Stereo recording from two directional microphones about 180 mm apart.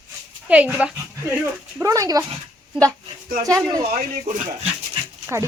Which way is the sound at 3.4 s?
20° right (ahead or behind).